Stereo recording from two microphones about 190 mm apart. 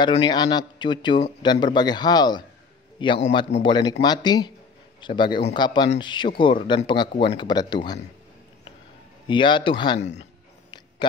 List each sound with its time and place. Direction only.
0.0 s speech: 25° left (ahead or behind)
9.3 s speech: 25° left (ahead or behind)